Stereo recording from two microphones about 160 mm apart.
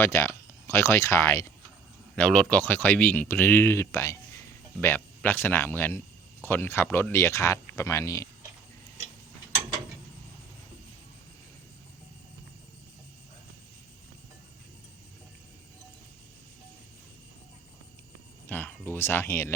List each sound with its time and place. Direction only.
0.0 s speech: 15° left (ahead or behind)
2.1 s speech: 5° left (ahead or behind)
18.4 s speech: 10° left (ahead or behind)